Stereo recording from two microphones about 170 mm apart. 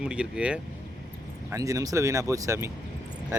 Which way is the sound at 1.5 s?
20° right (ahead or behind).